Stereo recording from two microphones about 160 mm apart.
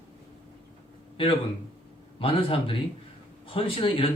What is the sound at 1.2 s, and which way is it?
A man's voice, 35° left (ahead or behind).